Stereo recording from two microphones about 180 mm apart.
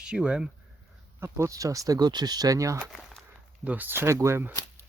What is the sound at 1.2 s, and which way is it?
Speech, 15° right (ahead or behind).